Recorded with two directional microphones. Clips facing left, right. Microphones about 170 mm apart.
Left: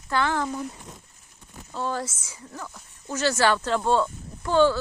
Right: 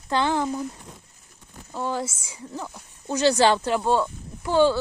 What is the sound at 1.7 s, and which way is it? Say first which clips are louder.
Speech: right 1 dB; 15° right (ahead or behind).